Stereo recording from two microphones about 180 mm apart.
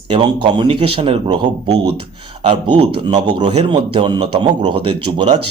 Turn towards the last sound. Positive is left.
turn(degrees=-35)  # may be behind; listen again after turning